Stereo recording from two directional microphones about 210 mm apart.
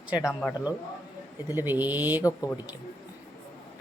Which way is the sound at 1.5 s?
10° right (ahead or behind).